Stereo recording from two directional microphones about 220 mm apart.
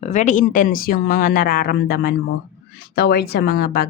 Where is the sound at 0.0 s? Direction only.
35° left (ahead or behind).